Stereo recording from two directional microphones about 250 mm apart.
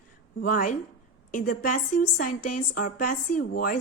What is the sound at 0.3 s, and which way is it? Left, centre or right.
A woman's voice, left.